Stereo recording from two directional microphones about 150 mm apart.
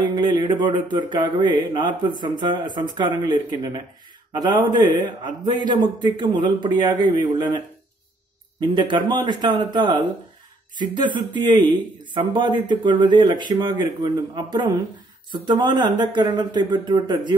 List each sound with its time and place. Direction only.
0.0 s speech: 30° right (ahead or behind)
8.5 s speech: 30° right (ahead or behind)